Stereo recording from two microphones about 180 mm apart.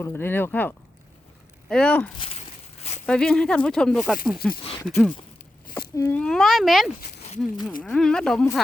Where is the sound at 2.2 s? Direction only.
35° left (ahead or behind).